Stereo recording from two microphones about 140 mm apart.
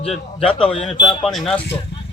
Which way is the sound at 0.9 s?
35° left (ahead or behind).